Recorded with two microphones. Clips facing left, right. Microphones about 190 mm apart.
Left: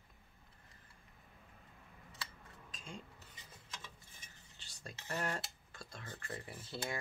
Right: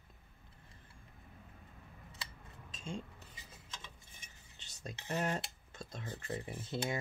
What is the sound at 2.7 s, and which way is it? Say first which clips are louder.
Dishes: right 7 dB; 25° right (ahead or behind).